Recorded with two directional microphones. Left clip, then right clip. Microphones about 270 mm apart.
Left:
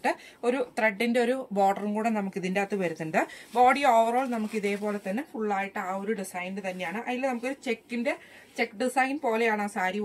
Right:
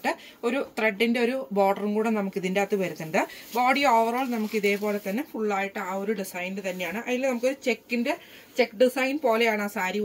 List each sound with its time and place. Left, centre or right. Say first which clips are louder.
0.0 s speech: even; centre